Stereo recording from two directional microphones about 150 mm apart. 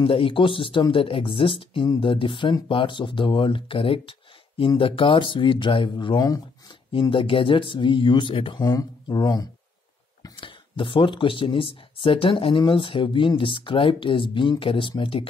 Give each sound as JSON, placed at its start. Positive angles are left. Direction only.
{"t": 0.0, "sound": "speech", "side_deg": 35}
{"t": 6.9, "sound": "speech", "side_deg": 35}